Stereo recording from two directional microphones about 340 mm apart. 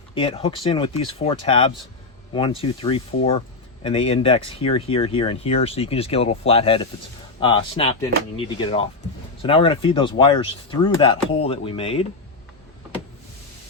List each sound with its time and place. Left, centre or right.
0.1 s speech: centre